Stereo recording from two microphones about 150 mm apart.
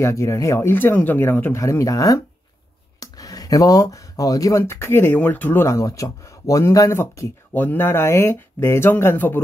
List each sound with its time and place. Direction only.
0.0 s speech: 20° left (ahead or behind)